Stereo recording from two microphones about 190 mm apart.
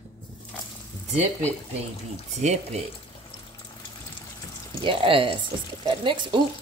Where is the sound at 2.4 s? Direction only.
35° right (ahead or behind).